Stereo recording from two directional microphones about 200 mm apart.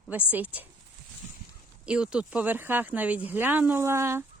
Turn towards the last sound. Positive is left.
turn(degrees=-15)  # may be behind; listen again after turning